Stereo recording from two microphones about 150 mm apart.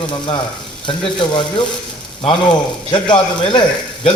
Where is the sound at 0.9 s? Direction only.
35° left (ahead or behind).